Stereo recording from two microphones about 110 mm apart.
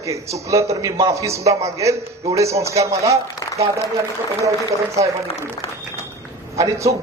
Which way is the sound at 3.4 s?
35° left (ahead or behind).